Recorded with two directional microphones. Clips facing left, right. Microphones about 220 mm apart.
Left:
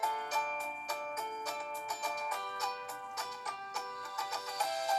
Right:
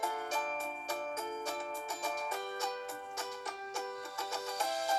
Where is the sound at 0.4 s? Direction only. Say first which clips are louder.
Right 2 dB; 45° right (ahead or behind).